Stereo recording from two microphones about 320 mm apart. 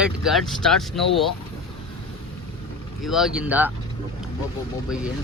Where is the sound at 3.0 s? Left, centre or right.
Centre.